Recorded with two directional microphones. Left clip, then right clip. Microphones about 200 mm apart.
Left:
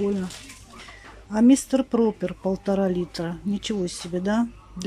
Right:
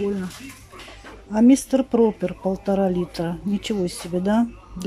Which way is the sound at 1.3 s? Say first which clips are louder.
Right 2 dB; centre (ahead or behind).